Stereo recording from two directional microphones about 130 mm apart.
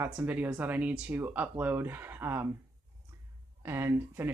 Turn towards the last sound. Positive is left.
turn(degrees=-15)  # may be behind; listen again after turning